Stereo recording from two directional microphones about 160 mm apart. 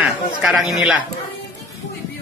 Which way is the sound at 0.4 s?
5° right (ahead or behind).